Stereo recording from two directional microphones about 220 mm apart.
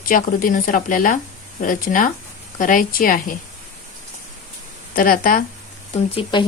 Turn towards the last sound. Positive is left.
turn(degrees=25)  # may be behind; listen again after turning